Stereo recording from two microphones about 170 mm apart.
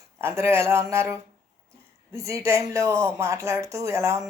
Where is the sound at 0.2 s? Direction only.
15° right (ahead or behind).